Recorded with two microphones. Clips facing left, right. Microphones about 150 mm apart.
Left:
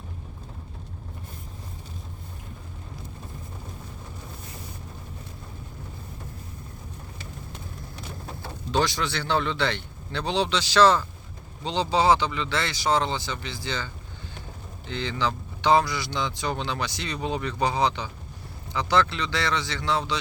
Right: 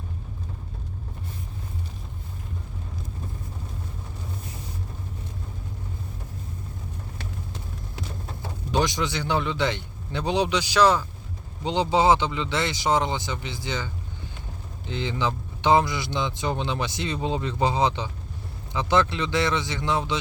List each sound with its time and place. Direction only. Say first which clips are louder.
8.4 s speech: even; 15° right (ahead or behind)